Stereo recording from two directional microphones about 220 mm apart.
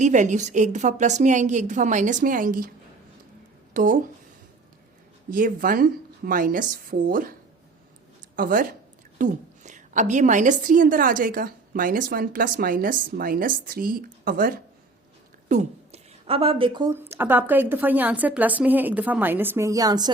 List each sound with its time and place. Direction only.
0.0 s a woman's voice: 35° right (ahead or behind)
3.8 s a woman's voice: 35° right (ahead or behind)
5.3 s a woman's voice: 40° right (ahead or behind)
8.4 s a woman's voice: 40° right (ahead or behind); by 20.1 s 15° right (ahead or behind)